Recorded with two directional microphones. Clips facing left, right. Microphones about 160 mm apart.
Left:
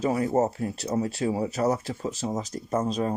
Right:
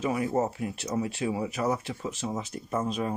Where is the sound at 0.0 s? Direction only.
40° left (ahead or behind).